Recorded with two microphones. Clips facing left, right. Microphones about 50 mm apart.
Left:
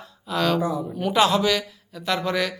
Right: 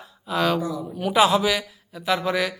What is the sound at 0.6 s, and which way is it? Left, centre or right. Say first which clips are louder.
Speech: left 3 dB; left.